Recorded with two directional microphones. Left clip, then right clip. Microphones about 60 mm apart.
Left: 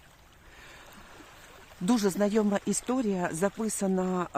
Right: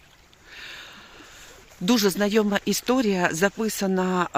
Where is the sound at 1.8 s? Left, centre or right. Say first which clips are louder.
Right 5 dB; centre.